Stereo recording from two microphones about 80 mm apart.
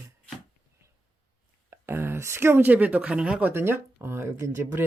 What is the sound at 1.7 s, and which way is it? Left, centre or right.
Speech, right.